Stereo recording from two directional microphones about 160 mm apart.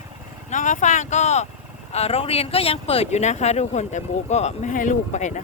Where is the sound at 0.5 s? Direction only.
50° left (ahead or behind).